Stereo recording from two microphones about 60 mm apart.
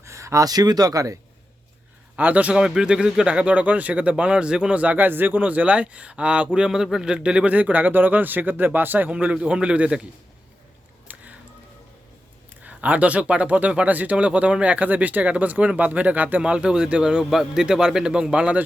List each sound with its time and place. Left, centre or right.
0.0 s speech: right
2.1 s a man's voice: right
7.5 s speech: right
9.1 s a man's voice: centre
11.1 s a sound: right
12.6 s a man's voice: right
16.4 s a man's voice: centre